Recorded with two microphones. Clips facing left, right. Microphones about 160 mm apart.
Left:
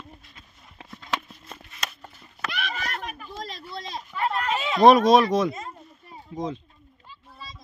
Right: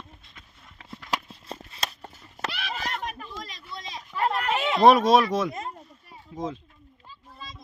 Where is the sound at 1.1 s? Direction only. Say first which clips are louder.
Even; 30° right (ahead or behind).